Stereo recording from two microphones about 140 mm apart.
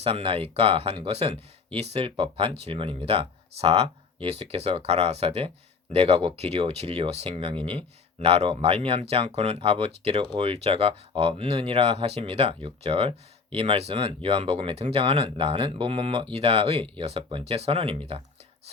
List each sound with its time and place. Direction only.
0.0 s speech: 45° right (ahead or behind)